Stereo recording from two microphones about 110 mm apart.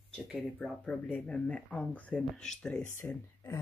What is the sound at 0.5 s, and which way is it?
Speech, 10° left (ahead or behind).